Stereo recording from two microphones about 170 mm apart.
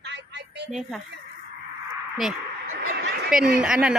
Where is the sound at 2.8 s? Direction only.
65° right (ahead or behind).